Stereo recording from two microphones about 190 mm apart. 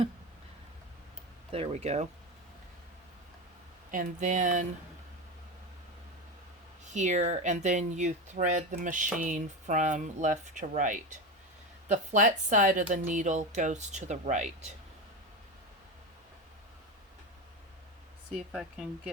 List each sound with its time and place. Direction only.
1.5 s speech: 30° right (ahead or behind)
3.9 s speech: 40° right (ahead or behind)
6.8 s speech: 40° right (ahead or behind)
18.3 s speech: 5° right (ahead or behind)